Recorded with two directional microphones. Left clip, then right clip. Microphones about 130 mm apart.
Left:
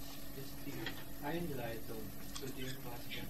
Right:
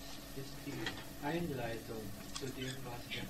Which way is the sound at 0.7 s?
45° left (ahead or behind).